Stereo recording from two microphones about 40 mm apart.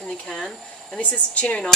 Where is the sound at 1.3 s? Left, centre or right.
Left.